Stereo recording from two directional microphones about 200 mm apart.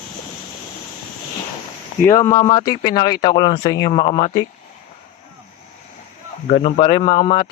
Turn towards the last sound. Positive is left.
turn(degrees=25)  # may be behind; listen again after turning